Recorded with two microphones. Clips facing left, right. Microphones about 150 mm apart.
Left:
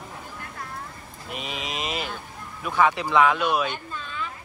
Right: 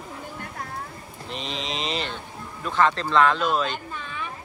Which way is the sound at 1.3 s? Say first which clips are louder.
Right 1 dB; 5° left (ahead or behind).